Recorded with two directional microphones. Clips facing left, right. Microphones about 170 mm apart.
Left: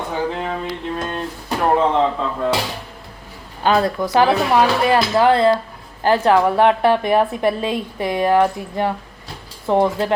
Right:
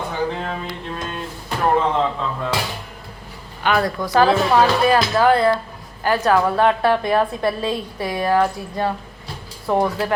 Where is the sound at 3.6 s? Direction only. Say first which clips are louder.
Left 3 dB; 25° left (ahead or behind).